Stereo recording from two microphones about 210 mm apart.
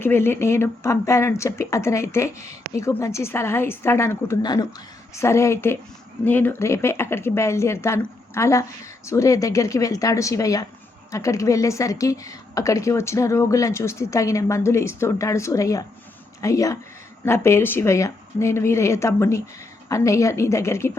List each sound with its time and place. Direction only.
0.0 s a woman's voice: 10° left (ahead or behind)